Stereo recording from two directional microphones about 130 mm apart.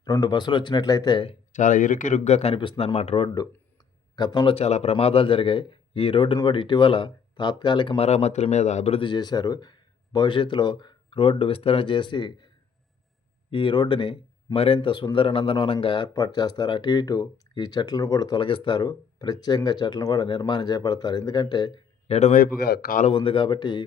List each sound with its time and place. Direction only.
0.0 s speech: 30° left (ahead or behind)
1.5 s speech: 85° left; by 3.2 s 50° left (ahead or behind)
4.1 s speech: 30° left (ahead or behind)
4.5 s speech: 55° left (ahead or behind); by 7.9 s 35° left (ahead or behind)
7.9 s speech: 55° left (ahead or behind)
9.0 s speech: 30° left (ahead or behind)
13.5 s speech: 40° left (ahead or behind)
22.0 s a man's voice: 60° left (ahead or behind)
22.9 s speech: 80° left
23.1 s speech: 40° left (ahead or behind)